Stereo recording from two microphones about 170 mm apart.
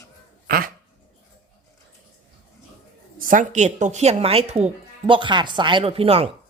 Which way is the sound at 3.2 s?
50° right (ahead or behind).